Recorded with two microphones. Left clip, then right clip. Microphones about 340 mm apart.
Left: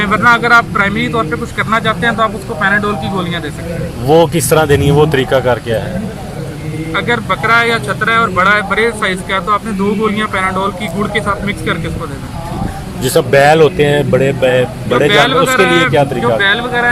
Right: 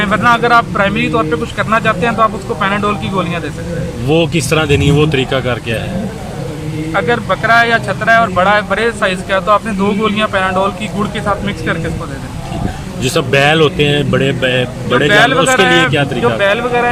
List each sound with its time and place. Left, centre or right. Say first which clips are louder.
0.0 s speech: left 1 dB; centre
4.3 s speech: left 3 dB; centre
6.9 s speech: right 1 dB; centre
13.0 s speech: left 3 dB; centre
15.1 s speech: right 2 dB; centre
15.4 s speech: even; left
16.4 s speech: right 1 dB; centre